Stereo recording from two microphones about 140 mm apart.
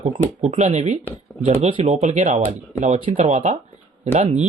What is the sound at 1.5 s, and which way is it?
Speech, 45° right (ahead or behind).